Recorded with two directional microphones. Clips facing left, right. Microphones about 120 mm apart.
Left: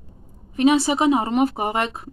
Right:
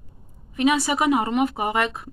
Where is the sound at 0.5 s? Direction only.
30° left (ahead or behind).